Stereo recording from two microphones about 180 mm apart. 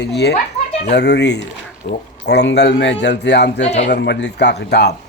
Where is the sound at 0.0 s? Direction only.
65° left (ahead or behind).